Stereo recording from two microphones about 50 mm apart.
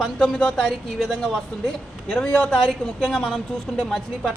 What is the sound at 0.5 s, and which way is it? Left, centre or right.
A woman's voice, centre.